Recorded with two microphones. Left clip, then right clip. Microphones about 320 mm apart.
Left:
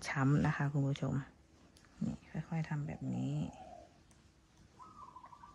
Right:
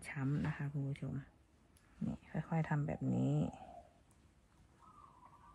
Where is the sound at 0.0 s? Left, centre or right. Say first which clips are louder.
Left 8 dB; centre.